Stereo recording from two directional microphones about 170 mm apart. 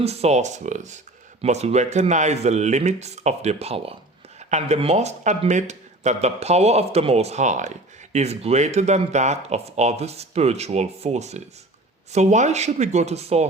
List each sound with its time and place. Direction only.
0.0 s speech: 40° right (ahead or behind)